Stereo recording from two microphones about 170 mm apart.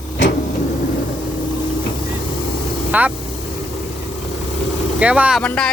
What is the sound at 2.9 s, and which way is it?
Speech, 10° right (ahead or behind).